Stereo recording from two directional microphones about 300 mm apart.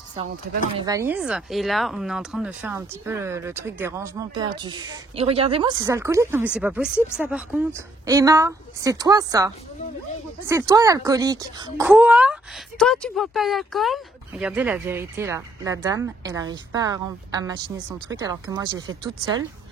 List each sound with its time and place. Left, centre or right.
0.1 s speech: right
0.7 s speech: centre
10.7 s speech: centre